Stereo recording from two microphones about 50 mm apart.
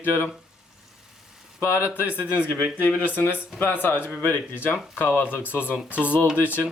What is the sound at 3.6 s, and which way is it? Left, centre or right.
Speech, left.